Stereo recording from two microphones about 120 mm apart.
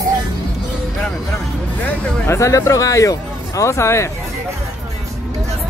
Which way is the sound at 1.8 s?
25° left (ahead or behind).